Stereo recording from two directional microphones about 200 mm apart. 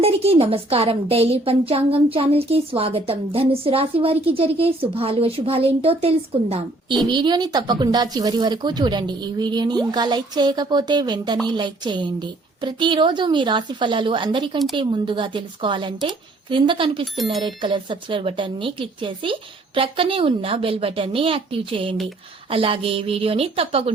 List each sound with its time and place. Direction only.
0.0 s a woman's voice: 30° right (ahead or behind)